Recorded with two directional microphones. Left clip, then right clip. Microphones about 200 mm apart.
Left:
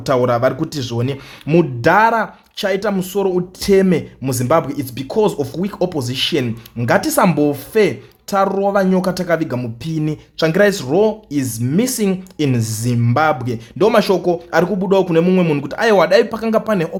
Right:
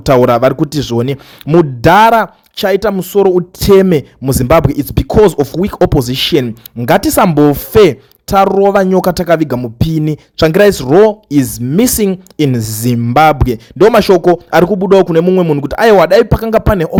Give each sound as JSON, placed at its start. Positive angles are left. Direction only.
{"t": 0.0, "sound": "speech", "side_deg": -45}
{"t": 1.5, "sound": "speech", "side_deg": -30}
{"t": 1.8, "sound": "speech", "side_deg": -45}
{"t": 15.6, "sound": "speech", "side_deg": -40}